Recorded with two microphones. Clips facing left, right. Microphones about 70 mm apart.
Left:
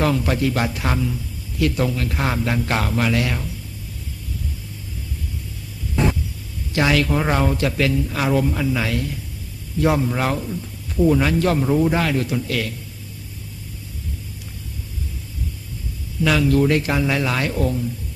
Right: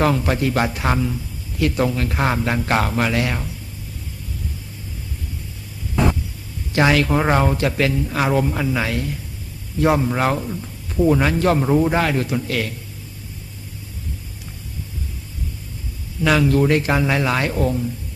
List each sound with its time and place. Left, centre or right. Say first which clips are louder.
0.0 s speech: right 1 dB; right
6.7 s speech: right 2 dB; right
16.2 s speech: right 1 dB; right